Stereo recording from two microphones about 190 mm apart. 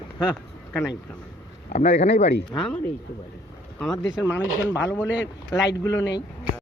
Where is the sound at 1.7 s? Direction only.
35° left (ahead or behind).